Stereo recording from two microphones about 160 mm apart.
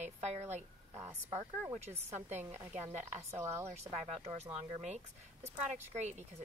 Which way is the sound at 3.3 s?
15° right (ahead or behind).